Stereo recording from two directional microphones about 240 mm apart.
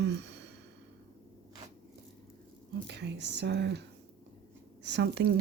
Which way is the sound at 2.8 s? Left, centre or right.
Right.